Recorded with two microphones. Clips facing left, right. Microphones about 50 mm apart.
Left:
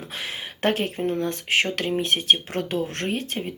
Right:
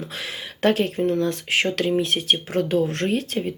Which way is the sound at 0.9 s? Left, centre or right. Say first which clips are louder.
Right 4 dB; left.